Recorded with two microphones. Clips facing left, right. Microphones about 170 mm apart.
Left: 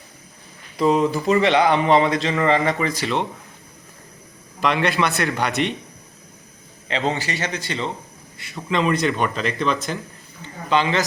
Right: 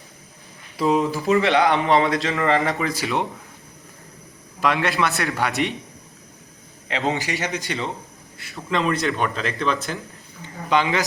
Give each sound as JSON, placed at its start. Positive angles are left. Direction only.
{"t": 0.8, "sound": "a man's voice", "side_deg": 0}
{"t": 4.6, "sound": "a man's voice", "side_deg": 0}
{"t": 6.8, "sound": "a man's voice", "side_deg": -5}
{"t": 8.4, "sound": "a man's voice", "side_deg": 0}
{"t": 10.4, "sound": "a sound", "side_deg": -10}